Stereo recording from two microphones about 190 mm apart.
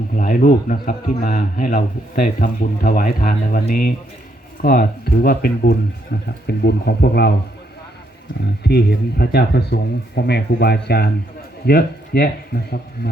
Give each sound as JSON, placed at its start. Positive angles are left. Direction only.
{"t": 0.2, "sound": "a man's voice", "side_deg": 45}
{"t": 8.6, "sound": "speech", "side_deg": 55}